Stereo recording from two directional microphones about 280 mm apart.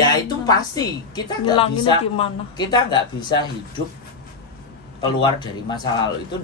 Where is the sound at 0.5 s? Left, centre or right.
Centre.